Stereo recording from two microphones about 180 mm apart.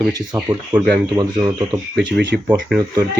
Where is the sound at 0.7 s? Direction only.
10° right (ahead or behind).